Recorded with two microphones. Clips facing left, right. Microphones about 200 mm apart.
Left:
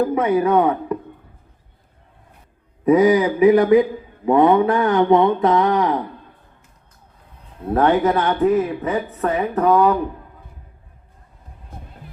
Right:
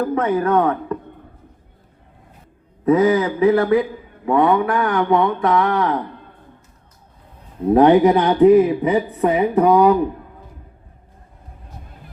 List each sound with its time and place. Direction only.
0.0 s speech: 10° left (ahead or behind)
2.8 s speech: 15° left (ahead or behind)
7.7 s a woman's voice: 15° right (ahead or behind)
11.7 s music: 55° left (ahead or behind)